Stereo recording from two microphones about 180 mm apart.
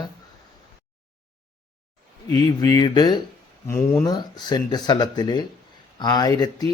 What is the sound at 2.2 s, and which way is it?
Speech, 20° left (ahead or behind).